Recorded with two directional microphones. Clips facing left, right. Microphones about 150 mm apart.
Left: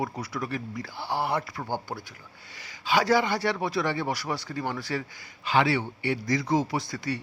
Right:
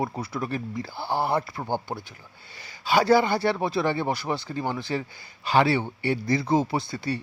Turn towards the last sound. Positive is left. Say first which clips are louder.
# right 2 dB
turn(degrees=-30)  # may be behind; listen again after turning